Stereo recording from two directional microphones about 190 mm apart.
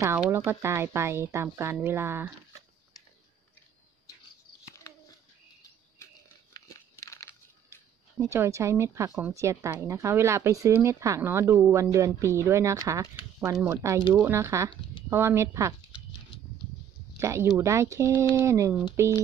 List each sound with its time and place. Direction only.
0.0 s a woman's voice: 10° right (ahead or behind)
6.5 s crunch: 15° left (ahead or behind)
8.3 s a woman's voice: 15° right (ahead or behind)
17.2 s a woman's voice: 15° right (ahead or behind)